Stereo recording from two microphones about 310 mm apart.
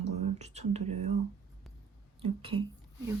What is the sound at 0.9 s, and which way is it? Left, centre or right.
Speech, right.